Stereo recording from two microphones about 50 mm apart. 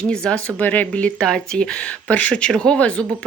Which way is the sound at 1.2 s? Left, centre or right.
Centre.